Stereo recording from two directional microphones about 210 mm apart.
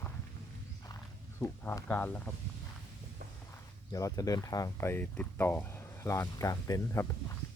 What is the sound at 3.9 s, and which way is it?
Speech, 15° left (ahead or behind).